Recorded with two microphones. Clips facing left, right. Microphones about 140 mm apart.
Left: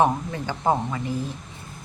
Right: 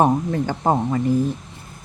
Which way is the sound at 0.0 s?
45° right (ahead or behind).